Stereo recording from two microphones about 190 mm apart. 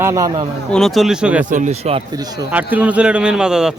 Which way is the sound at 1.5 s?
40° right (ahead or behind).